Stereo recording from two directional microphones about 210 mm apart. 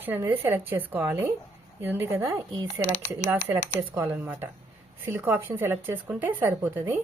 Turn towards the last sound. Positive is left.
turn(degrees=-10)  # may be behind; listen again after turning